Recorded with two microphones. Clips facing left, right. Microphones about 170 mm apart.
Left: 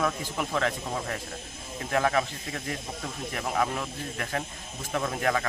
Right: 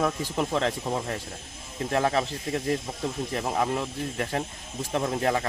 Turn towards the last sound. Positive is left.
turn(degrees=-25)  # may be behind; listen again after turning